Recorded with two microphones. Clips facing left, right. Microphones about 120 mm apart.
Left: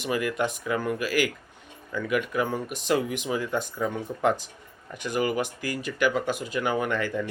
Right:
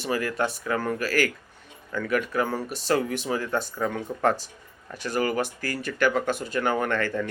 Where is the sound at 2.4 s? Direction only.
15° left (ahead or behind).